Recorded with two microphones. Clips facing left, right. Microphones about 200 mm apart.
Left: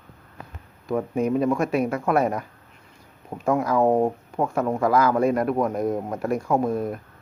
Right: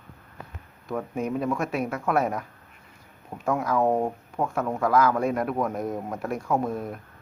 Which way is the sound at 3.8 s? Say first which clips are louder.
Left 4 dB; 15° left (ahead or behind).